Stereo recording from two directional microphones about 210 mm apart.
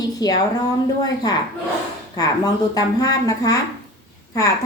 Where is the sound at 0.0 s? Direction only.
20° left (ahead or behind).